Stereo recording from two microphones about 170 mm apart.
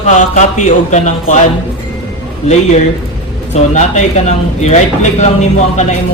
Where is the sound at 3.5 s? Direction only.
40° left (ahead or behind).